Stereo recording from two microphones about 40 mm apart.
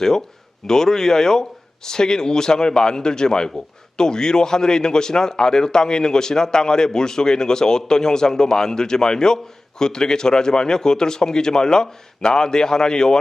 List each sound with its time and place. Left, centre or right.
0.0 s a man's voice: centre